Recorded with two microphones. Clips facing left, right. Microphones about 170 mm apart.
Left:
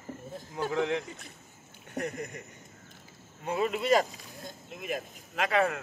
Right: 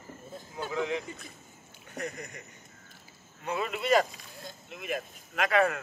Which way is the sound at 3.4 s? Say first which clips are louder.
Left 3 dB; 40° left (ahead or behind).